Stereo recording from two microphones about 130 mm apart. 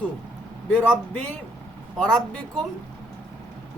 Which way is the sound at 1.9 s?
5° left (ahead or behind).